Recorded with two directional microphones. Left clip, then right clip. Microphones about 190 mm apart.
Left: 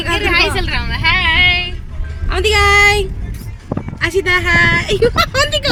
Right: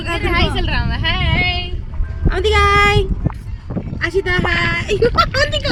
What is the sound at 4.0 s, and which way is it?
Speech, 15° left (ahead or behind).